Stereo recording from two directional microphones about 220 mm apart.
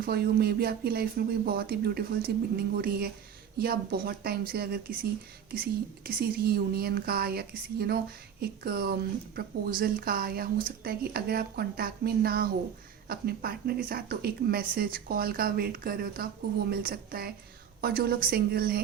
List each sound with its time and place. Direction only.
0.0 s a woman's voice: 45° right (ahead or behind)
6.1 s a woman's voice: 40° right (ahead or behind)